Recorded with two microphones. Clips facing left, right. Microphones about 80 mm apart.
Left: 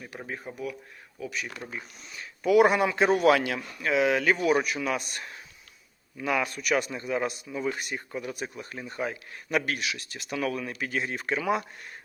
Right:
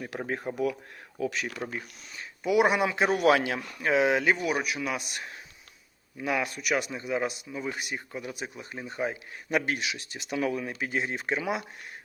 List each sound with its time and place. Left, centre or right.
0.3 s speech: right
1.2 s speech: right
1.6 s speech: right; by 3.3 s centre
3.3 s speech: centre
3.8 s speech: right
4.4 s speech: centre